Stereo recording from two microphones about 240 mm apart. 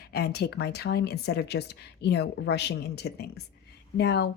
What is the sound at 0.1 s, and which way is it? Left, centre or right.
Speech, left.